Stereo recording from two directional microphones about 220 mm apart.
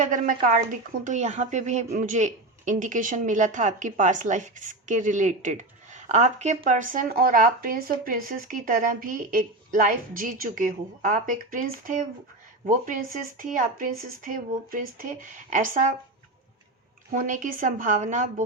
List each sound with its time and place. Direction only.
0.4 s speech: 35° right (ahead or behind)
17.1 s speech: 35° right (ahead or behind)